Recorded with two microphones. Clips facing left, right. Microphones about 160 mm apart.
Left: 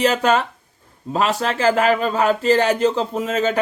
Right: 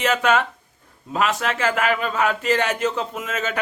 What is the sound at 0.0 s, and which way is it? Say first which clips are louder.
Speech: left 2 dB; 35° left (ahead or behind).